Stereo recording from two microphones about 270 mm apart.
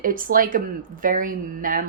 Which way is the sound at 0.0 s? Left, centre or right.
Right.